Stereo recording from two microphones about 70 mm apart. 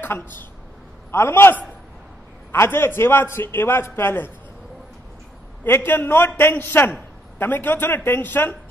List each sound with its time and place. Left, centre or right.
0.0 s a man's voice: left
5.9 s a man's voice: left